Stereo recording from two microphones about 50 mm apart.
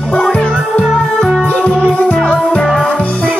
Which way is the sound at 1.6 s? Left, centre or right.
Left.